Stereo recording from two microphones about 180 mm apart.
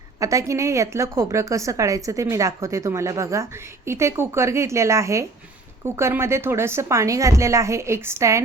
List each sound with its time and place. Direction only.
0.2 s a woman's voice: 20° right (ahead or behind)